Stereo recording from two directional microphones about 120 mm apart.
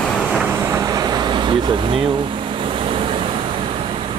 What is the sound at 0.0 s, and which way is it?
Vehicle, 5° left (ahead or behind).